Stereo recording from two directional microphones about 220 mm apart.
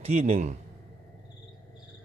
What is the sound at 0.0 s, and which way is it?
Speech, 30° right (ahead or behind).